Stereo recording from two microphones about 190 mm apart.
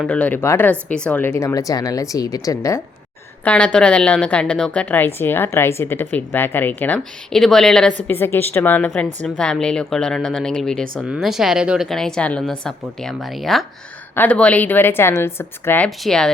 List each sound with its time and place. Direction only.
0.0 s a woman's voice: 5° left (ahead or behind)
3.4 s a woman's voice: 5° left (ahead or behind)